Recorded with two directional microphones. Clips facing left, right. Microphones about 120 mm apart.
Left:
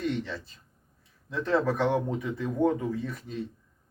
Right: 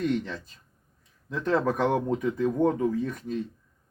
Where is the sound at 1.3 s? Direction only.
45° right (ahead or behind).